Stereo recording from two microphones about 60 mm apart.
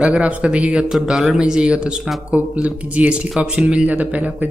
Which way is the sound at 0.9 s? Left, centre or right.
Centre.